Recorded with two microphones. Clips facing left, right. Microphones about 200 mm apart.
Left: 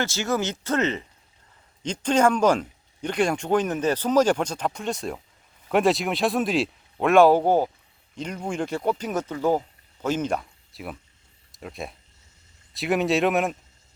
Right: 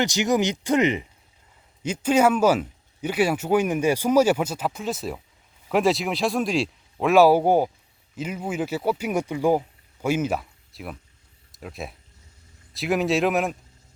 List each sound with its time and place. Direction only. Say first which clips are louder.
0.0 s speech: right 4 dB; 15° right (ahead or behind); by 13.6 s centre (ahead or behind)